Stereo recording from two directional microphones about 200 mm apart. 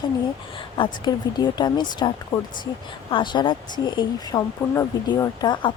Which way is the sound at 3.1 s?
25° left (ahead or behind).